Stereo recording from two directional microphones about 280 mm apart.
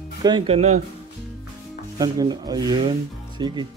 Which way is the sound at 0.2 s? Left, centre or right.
Centre.